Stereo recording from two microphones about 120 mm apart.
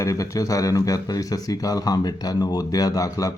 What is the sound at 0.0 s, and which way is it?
Speech, 25° left (ahead or behind).